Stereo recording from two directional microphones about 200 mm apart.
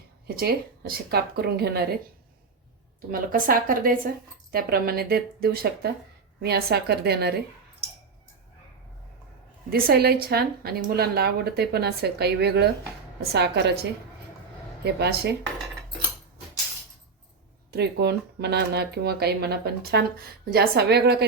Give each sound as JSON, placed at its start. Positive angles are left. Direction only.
{"t": 0.3, "sound": "speech", "side_deg": -50}
{"t": 3.1, "sound": "speech", "side_deg": -45}
{"t": 9.6, "sound": "a woman's voice", "side_deg": -50}
{"t": 14.8, "sound": "a woman's voice", "side_deg": -55}
{"t": 17.7, "sound": "speech", "side_deg": -55}